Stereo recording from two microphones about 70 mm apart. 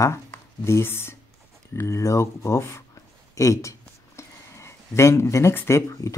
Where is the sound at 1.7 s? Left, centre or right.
Left.